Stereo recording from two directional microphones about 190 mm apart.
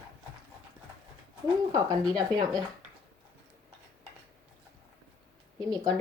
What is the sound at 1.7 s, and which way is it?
Speech, 20° right (ahead or behind).